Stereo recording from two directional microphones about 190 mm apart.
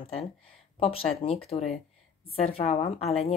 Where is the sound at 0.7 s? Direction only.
30° left (ahead or behind).